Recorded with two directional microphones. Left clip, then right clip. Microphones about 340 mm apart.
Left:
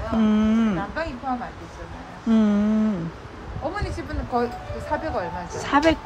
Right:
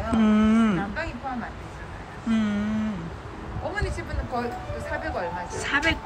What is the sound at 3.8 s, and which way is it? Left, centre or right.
Music, left.